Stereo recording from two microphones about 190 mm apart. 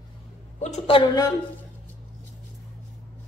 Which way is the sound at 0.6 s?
30° left (ahead or behind).